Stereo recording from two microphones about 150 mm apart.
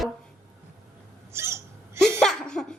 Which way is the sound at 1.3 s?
15° right (ahead or behind).